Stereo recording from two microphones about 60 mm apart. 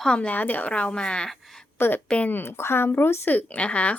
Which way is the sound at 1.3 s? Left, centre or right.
Centre.